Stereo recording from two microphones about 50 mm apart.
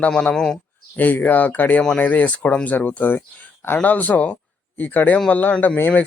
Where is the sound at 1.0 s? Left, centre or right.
Left.